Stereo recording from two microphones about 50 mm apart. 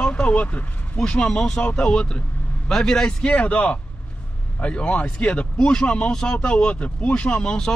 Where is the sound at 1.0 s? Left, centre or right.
Centre.